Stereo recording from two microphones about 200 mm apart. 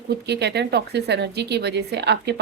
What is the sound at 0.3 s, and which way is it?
A woman's voice, 55° right (ahead or behind).